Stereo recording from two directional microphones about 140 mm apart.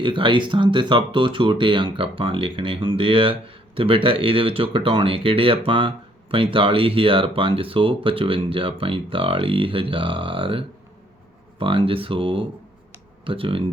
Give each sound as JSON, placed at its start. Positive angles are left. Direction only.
{"t": 0.0, "sound": "speech", "side_deg": -35}